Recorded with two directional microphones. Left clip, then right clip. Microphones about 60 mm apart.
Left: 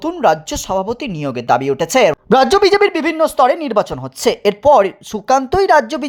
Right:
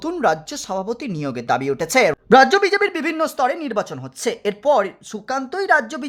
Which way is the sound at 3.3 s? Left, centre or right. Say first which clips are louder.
Left 7 dB; left.